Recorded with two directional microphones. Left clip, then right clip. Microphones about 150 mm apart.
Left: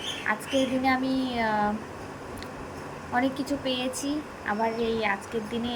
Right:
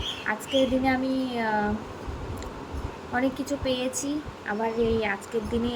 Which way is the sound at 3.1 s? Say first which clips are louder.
Even; centre (ahead or behind).